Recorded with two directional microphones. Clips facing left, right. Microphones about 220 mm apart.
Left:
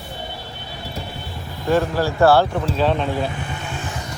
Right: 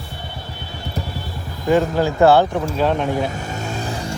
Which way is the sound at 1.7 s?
15° right (ahead or behind).